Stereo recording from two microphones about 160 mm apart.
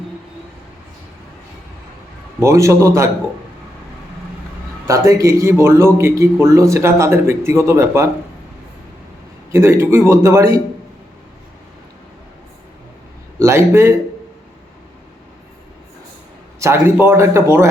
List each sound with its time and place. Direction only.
2.4 s a man's voice: 20° right (ahead or behind)
4.9 s a man's voice: 20° right (ahead or behind)
9.5 s a man's voice: 15° right (ahead or behind)
13.4 s a man's voice: 15° right (ahead or behind)
16.6 s a man's voice: 15° right (ahead or behind)